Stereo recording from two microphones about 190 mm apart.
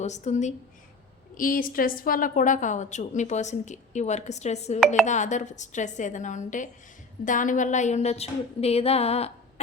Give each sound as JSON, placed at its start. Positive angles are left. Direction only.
{"t": 0.0, "sound": "a woman's voice", "side_deg": 35}
{"t": 1.4, "sound": "a woman's voice", "side_deg": 50}